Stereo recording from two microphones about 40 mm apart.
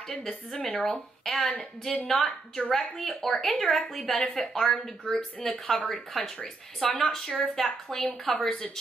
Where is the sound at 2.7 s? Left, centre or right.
Centre.